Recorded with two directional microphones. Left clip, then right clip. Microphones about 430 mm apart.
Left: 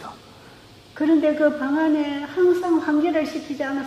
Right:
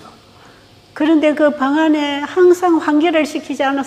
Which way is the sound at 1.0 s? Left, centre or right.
Right.